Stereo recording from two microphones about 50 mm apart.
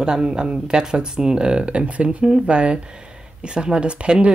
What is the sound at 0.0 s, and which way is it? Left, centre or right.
Speech, centre.